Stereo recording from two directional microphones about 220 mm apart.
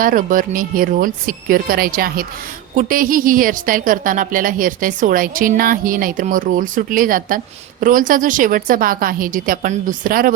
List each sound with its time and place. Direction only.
0.0 s a woman's voice: 40° right (ahead or behind)